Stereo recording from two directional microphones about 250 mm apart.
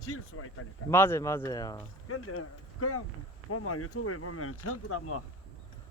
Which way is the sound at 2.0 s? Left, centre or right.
Left.